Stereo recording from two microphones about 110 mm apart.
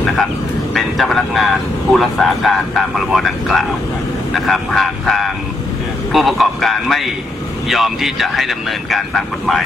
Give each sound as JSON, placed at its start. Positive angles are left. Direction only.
{"t": 0.0, "sound": "speech", "side_deg": 5}